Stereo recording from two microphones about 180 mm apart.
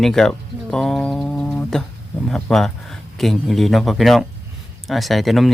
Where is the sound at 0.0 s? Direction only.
Centre (ahead or behind).